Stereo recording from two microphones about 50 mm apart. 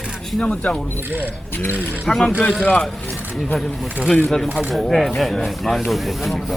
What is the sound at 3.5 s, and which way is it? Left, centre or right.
Speech, centre.